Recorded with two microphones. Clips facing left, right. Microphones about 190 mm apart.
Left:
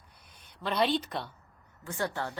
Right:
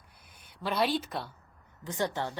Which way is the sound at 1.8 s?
20° right (ahead or behind).